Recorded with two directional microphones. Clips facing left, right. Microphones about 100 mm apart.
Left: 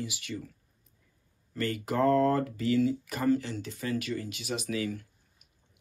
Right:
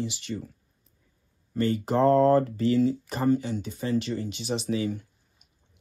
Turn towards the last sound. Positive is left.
turn(degrees=-25)  # may be behind; listen again after turning